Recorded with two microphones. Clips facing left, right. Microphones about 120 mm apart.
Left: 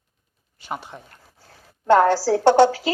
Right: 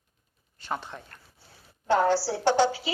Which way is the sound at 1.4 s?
80° left.